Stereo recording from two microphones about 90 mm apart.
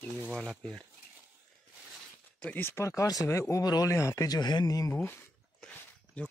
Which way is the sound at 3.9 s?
35° left (ahead or behind).